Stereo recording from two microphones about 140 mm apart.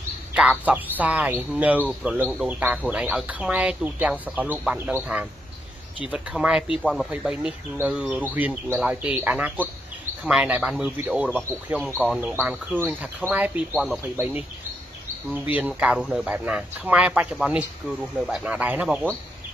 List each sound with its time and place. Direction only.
0.3 s a man's voice: 10° right (ahead or behind)